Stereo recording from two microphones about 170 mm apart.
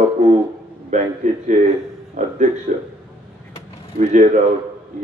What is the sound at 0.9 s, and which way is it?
Speech, 45° right (ahead or behind).